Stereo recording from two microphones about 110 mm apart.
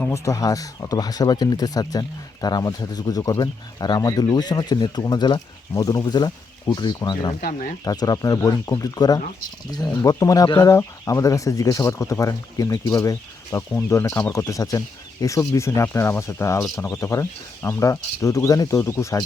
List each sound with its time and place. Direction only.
0.1 s speech: 30° left (ahead or behind)